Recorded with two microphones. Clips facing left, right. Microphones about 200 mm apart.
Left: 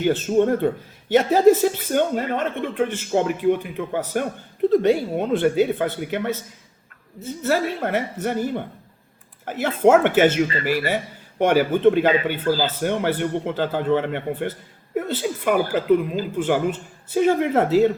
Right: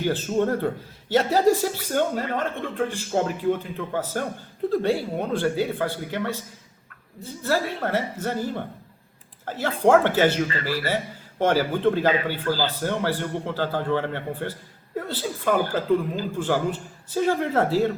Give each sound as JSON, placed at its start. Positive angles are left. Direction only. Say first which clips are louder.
{"t": 0.0, "sound": "speech", "louder": "left 5 dB", "side_deg": 20}